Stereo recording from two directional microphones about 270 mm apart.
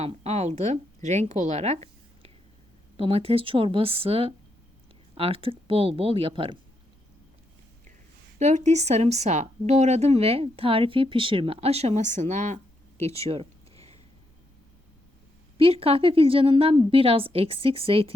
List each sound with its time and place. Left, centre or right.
0.0 s speech: right
8.4 s speech: right
13.1 s a sound: right
15.5 s speech: right